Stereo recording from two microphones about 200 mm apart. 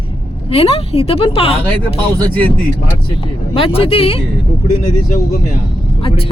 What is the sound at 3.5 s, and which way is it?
Speech, 30° left (ahead or behind).